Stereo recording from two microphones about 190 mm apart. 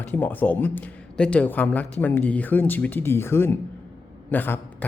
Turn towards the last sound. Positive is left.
turn(degrees=10)  # may be behind; listen again after turning